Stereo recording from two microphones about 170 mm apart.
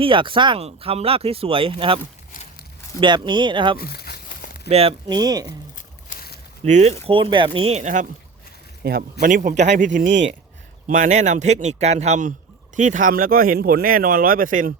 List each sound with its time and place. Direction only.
0.0 s speech: 30° right (ahead or behind)
2.3 s a sound: 55° left (ahead or behind)
3.0 s speech: 25° right (ahead or behind)
3.8 s speech: 65° left (ahead or behind)
4.7 s speech: 35° right (ahead or behind)
5.7 s a sound: 55° left (ahead or behind)
6.7 s speech: 40° right (ahead or behind)
8.8 s speech: 65° right (ahead or behind)
9.2 s speech: 55° right (ahead or behind)